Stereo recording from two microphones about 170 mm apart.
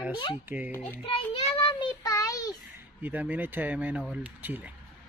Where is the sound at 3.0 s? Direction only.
10° right (ahead or behind).